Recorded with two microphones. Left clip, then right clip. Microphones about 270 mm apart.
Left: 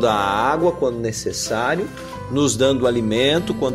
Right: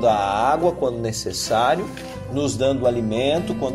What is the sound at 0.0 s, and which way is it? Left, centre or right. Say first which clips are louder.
Speech: even; left.